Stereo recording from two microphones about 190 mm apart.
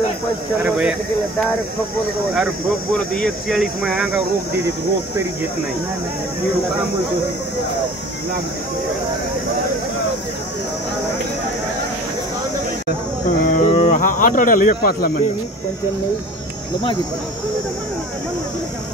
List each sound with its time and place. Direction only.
0.6 s speech: 10° right (ahead or behind)
2.3 s speech: centre (ahead or behind)
13.4 s speech: 45° left (ahead or behind)